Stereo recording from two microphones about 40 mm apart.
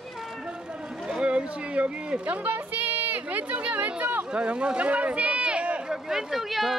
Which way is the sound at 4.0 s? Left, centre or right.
Right.